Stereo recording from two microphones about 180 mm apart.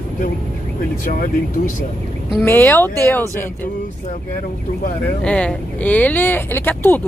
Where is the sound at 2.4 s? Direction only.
15° left (ahead or behind).